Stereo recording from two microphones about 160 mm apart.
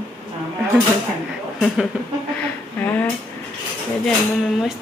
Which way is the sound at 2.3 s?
10° left (ahead or behind).